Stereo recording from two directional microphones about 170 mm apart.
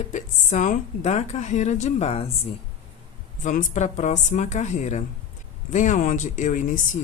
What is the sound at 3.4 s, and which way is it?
Speech, 50° left (ahead or behind).